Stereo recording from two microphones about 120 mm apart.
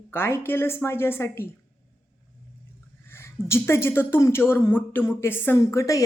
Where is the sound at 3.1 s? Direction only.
20° left (ahead or behind).